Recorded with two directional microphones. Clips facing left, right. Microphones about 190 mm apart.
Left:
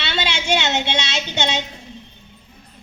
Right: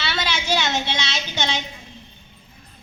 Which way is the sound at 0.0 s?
25° left (ahead or behind).